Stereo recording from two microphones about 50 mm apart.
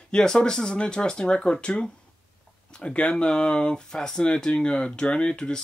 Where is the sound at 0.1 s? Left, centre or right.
Centre.